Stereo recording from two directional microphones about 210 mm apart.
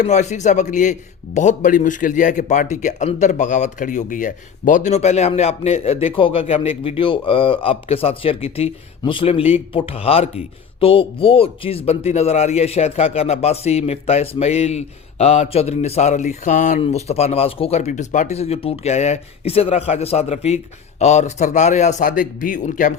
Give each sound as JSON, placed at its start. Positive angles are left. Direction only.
{"t": 0.0, "sound": "a man's voice", "side_deg": 35}